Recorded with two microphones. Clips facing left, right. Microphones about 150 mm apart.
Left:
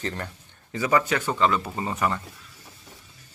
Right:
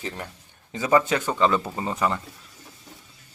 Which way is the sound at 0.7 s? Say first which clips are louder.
Right 2 dB; 20° right (ahead or behind).